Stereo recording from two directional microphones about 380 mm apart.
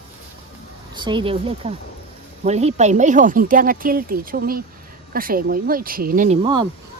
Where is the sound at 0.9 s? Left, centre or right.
Centre.